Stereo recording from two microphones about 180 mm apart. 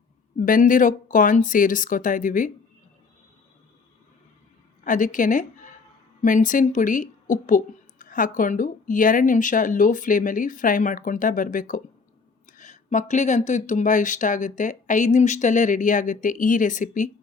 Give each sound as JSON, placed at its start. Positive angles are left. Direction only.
{"t": 0.3, "sound": "speech", "side_deg": 50}
{"t": 4.8, "sound": "a woman's voice", "side_deg": 45}